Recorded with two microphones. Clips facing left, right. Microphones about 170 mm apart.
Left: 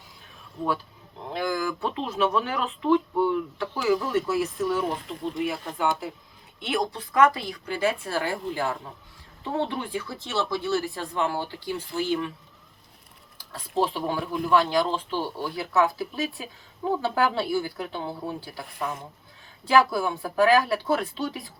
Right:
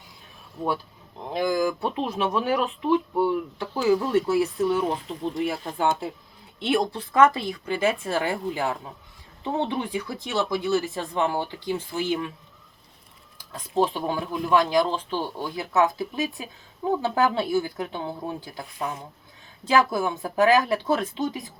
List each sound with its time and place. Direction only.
1.3 s speech: 15° right (ahead or behind)
3.6 s speech: 25° right (ahead or behind)
13.4 s speech: 15° right (ahead or behind)
19.6 s speech: 20° right (ahead or behind)